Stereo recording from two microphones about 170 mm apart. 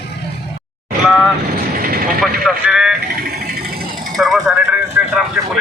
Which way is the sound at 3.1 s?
65° right (ahead or behind).